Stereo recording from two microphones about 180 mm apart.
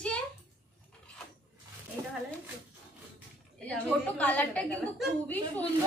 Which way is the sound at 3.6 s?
10° left (ahead or behind).